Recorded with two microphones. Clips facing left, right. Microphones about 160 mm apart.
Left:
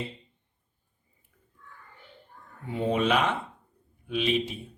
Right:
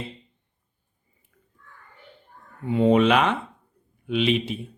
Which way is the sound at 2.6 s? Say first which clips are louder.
Right 8 dB; 80° right.